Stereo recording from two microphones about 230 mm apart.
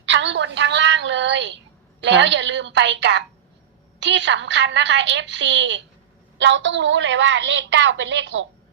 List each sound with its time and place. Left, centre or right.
0.0 s a woman's voice: right